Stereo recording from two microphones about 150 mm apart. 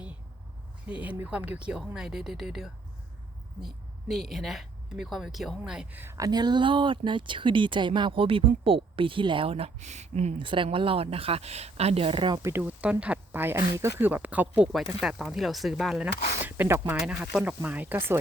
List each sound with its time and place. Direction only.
0.9 s speech: 10° right (ahead or behind)
4.1 s speech: centre (ahead or behind); by 10.3 s 50° right (ahead or behind)
10.3 s speech: 35° right (ahead or behind)
12.4 s speech: 15° right (ahead or behind); by 16.0 s centre (ahead or behind)
16.4 s speech: 15° right (ahead or behind)